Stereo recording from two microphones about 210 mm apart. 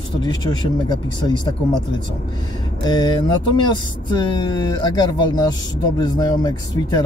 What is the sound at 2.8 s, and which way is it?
Speech, 20° left (ahead or behind).